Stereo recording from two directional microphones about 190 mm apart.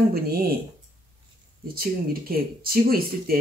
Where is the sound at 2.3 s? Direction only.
50° right (ahead or behind).